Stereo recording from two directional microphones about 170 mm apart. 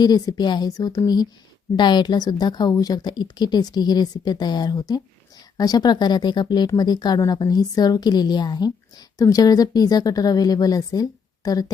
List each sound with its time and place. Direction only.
0.0 s a woman's voice: 25° left (ahead or behind)